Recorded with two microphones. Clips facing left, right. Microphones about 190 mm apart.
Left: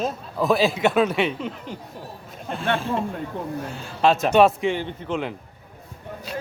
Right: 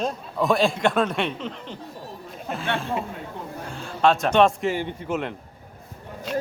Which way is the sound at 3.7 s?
Centre (ahead or behind).